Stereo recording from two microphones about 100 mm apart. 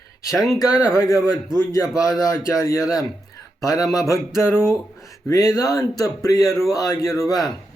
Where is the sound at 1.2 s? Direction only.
40° right (ahead or behind).